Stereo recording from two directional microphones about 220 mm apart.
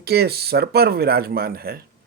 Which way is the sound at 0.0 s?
45° right (ahead or behind).